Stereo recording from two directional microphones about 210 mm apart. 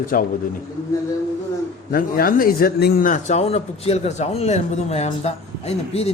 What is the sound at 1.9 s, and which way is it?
A man's voice, 45° left (ahead or behind).